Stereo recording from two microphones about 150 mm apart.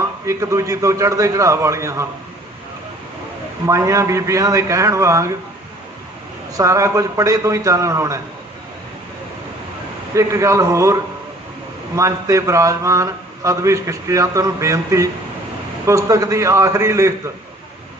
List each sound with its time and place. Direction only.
0.3 s a man's voice: 20° right (ahead or behind)
3.7 s a man's voice: 20° right (ahead or behind)
6.6 s a man's voice: 20° right (ahead or behind)
10.2 s a man's voice: 20° right (ahead or behind)
11.9 s a man's voice: 20° right (ahead or behind)